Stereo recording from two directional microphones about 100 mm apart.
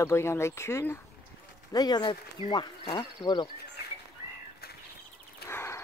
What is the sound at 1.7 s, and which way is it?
Speech, 40° left (ahead or behind).